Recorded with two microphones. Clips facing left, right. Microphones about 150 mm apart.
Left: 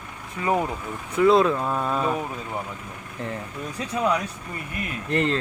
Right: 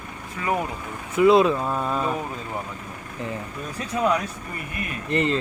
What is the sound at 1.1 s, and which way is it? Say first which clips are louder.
Speech: right 1 dB; 5° right (ahead or behind).